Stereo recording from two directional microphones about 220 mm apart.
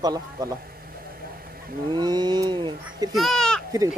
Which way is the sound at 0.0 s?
15° right (ahead or behind).